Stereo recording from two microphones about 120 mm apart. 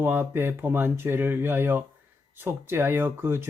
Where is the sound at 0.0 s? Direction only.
15° right (ahead or behind).